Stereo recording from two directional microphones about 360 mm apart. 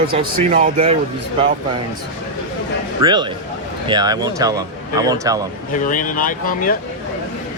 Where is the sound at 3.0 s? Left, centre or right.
Centre.